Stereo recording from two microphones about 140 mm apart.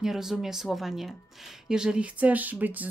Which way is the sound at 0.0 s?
5° right (ahead or behind).